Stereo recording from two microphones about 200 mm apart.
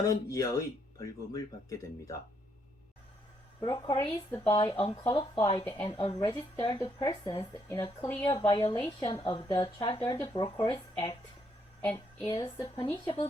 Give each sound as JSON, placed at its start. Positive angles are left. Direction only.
{"t": 0.1, "sound": "speech", "side_deg": 15}
{"t": 3.6, "sound": "speech", "side_deg": 25}
{"t": 11.8, "sound": "a woman's voice", "side_deg": 10}
{"t": 12.2, "sound": "speech", "side_deg": 25}